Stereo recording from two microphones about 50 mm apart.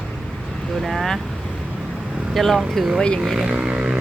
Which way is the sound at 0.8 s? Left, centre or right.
Centre.